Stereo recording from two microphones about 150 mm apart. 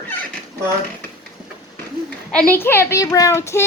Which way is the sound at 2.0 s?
5° left (ahead or behind).